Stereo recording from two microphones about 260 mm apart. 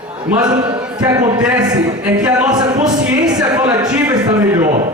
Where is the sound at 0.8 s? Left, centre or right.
Centre.